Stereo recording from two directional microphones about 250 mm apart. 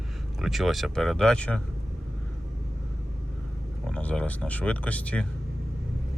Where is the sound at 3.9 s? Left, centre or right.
Centre.